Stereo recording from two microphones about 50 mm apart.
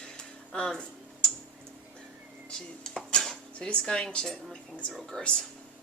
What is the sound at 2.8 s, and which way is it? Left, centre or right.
Dishes, centre.